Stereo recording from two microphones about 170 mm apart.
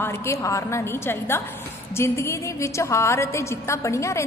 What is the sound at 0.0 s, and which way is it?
A woman's voice, 15° left (ahead or behind).